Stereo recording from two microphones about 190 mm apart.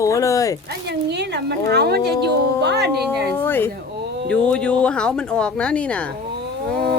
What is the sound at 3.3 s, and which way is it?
Speech, 10° left (ahead or behind).